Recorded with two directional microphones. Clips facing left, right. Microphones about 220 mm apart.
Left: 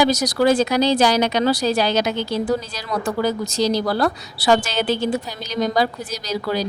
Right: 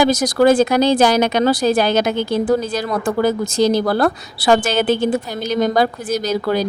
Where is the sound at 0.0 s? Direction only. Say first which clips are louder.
Right 4 dB; 50° right (ahead or behind).